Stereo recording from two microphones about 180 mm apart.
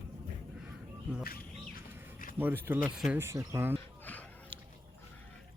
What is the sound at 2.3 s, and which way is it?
Speech, 10° right (ahead or behind).